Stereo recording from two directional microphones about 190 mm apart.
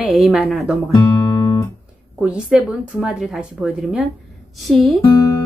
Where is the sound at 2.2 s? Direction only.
5° right (ahead or behind).